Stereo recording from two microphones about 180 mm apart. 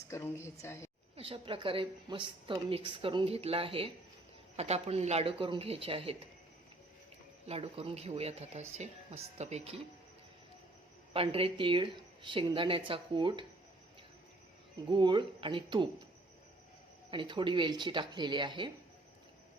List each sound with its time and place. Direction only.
0.1 s a woman's voice: 15° left (ahead or behind)
1.1 s a woman's voice: 30° right (ahead or behind)
7.4 s speech: 35° right (ahead or behind)
11.1 s a woman's voice: 30° right (ahead or behind)
14.8 s a woman's voice: 25° right (ahead or behind)
17.1 s a woman's voice: 30° right (ahead or behind)